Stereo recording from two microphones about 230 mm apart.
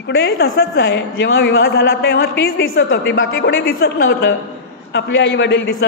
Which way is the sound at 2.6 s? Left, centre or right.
Left.